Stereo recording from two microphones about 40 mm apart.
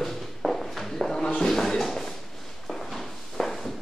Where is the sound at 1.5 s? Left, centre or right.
Centre.